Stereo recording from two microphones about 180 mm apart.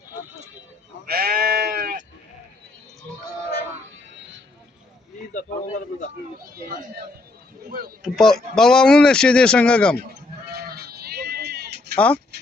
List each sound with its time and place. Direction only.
1.0 s sheep: 60° right (ahead or behind)
8.0 s speech: centre (ahead or behind)
10.5 s bleat: 60° right (ahead or behind)
11.9 s speech: 5° left (ahead or behind)